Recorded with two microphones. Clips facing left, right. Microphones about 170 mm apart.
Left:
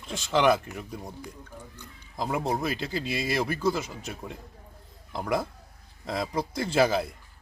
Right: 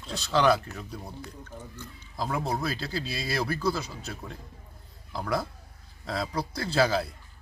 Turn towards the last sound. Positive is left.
turn(degrees=15)  # may be behind; listen again after turning